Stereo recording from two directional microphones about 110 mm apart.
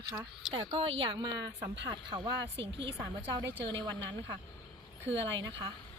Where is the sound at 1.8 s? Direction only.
35° right (ahead or behind).